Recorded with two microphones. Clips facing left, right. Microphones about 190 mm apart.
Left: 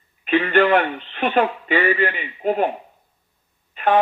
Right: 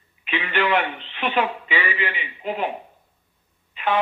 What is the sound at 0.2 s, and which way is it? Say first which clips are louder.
Speech: left 8 dB; 45° left (ahead or behind).